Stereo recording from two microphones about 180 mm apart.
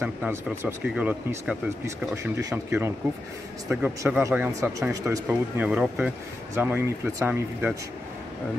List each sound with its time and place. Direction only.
0.0 s speech: 15° right (ahead or behind)